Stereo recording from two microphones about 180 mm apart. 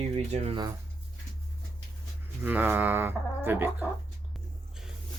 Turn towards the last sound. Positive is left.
turn(degrees=-10)  # may be behind; listen again after turning